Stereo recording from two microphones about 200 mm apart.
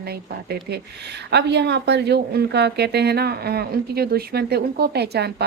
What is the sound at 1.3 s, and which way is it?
A woman's voice, 55° right (ahead or behind).